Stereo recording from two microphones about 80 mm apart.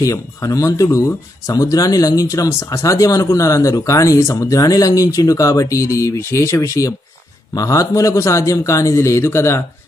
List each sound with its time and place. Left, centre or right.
0.0 s a man's voice: left